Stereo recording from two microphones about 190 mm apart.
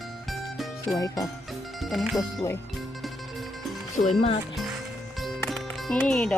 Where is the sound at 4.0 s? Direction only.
35° left (ahead or behind).